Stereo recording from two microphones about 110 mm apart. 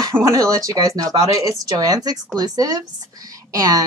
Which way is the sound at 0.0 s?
30° right (ahead or behind).